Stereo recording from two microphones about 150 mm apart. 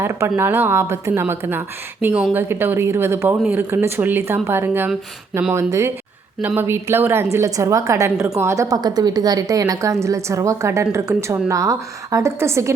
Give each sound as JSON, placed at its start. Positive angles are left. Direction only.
{"t": 0.0, "sound": "a woman's voice", "side_deg": -15}